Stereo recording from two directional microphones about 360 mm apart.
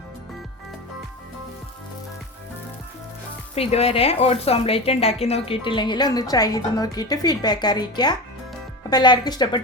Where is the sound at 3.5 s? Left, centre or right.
Centre.